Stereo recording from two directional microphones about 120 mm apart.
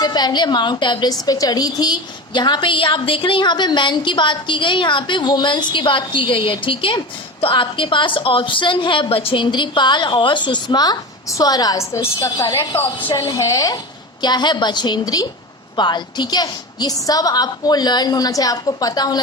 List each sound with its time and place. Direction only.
0.0 s a woman's voice: 35° left (ahead or behind); by 13.1 s 20° left (ahead or behind)
13.1 s a woman's voice: 30° left (ahead or behind)